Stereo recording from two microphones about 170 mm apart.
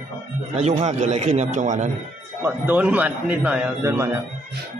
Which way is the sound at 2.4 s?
10° right (ahead or behind).